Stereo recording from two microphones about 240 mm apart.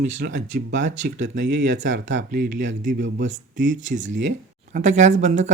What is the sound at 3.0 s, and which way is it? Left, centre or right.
Speech, right.